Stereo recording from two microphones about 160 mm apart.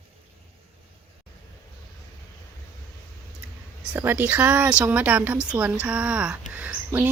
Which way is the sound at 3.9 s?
10° right (ahead or behind).